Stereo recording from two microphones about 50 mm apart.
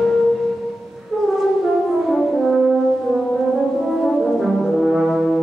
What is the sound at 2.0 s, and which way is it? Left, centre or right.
French horn, centre.